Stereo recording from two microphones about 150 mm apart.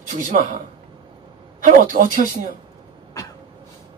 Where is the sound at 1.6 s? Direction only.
65° right (ahead or behind).